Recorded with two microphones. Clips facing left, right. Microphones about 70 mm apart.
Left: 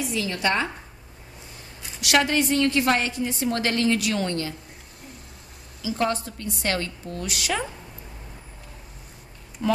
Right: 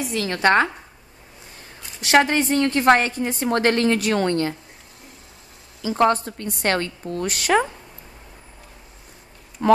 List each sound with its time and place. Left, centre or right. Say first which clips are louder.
0.0 s a woman's voice: right 5 dB; right
2.0 s a woman's voice: right 4 dB; right
5.8 s a woman's voice: right 7 dB; right
9.6 s a woman's voice: right 8 dB; right